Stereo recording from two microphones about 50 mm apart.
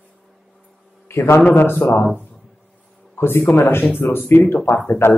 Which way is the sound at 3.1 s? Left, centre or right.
Left.